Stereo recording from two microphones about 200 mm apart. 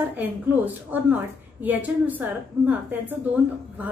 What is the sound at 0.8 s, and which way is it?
A woman's voice, 10° right (ahead or behind).